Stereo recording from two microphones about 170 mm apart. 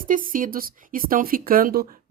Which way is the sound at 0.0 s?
55° right (ahead or behind).